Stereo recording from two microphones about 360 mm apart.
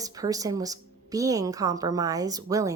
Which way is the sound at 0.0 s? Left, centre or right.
Centre.